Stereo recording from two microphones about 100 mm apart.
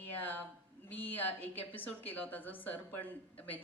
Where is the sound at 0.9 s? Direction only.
20° left (ahead or behind).